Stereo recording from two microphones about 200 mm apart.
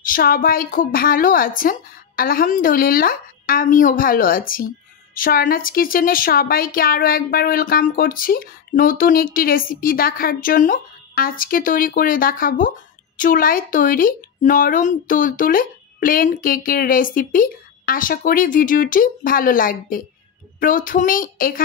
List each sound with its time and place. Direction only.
0.0 s a woman's voice: 45° left (ahead or behind)